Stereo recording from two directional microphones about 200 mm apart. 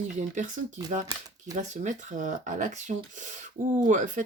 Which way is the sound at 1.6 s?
40° right (ahead or behind).